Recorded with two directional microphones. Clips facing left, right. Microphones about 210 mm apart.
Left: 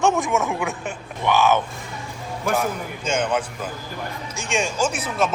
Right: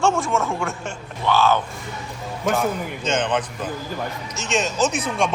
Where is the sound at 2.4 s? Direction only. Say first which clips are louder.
Right 2 dB; 5° left (ahead or behind).